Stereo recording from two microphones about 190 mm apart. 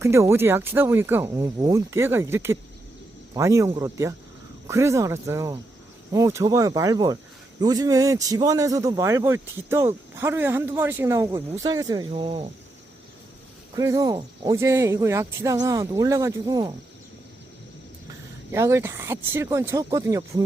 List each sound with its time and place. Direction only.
0.0 s a man's voice: 15° right (ahead or behind)
13.7 s a man's voice: 20° right (ahead or behind)
18.5 s a man's voice: 15° right (ahead or behind)